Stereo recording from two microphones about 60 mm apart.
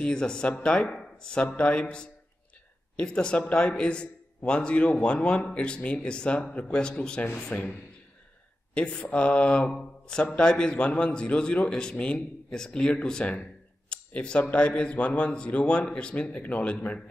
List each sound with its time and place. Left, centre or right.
0.0 s a man's voice: centre
0.5 s mantra: centre
0.9 s a man's voice: centre
7.5 s a man's voice: left
8.7 s mantra: centre
10.0 s a man's voice: centre